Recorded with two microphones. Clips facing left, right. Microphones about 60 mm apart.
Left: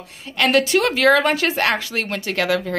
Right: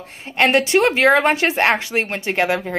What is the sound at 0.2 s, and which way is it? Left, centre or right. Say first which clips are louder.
Speech: right 1 dB; right.